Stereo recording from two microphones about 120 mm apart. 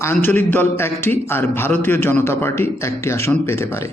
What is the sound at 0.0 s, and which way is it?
A man's voice, 15° left (ahead or behind).